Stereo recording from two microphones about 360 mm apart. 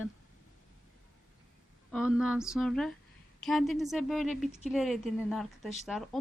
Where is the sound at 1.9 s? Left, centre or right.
Centre.